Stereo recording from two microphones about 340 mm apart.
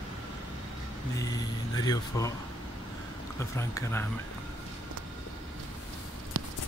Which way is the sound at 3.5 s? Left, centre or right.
Centre.